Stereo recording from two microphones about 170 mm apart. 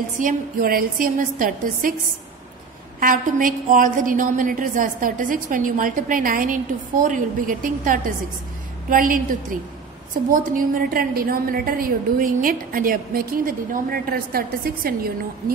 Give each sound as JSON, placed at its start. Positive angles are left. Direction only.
{"t": 0.2, "sound": "a woman's voice", "side_deg": -50}
{"t": 3.0, "sound": "a woman's voice", "side_deg": -55}